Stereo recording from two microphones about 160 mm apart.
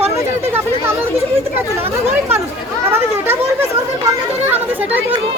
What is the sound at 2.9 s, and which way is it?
A child's voice, 15° right (ahead or behind).